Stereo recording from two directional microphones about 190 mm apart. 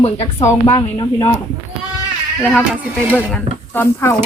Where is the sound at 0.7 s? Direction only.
15° left (ahead or behind).